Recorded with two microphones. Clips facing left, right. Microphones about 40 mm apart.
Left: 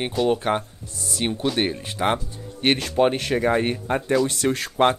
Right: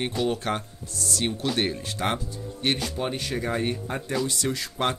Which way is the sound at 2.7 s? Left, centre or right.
Left.